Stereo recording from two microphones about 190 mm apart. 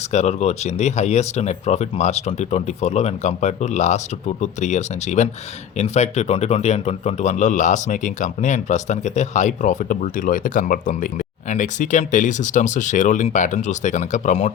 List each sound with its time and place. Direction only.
0.1 s a man's voice: 35° left (ahead or behind)